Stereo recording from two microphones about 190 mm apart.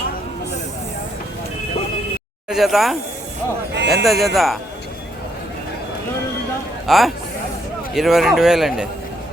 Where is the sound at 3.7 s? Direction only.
60° right (ahead or behind).